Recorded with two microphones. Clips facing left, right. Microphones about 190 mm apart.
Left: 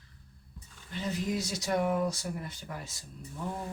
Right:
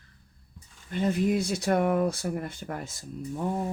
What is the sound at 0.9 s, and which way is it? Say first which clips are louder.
Speech: right 8 dB; 55° right (ahead or behind).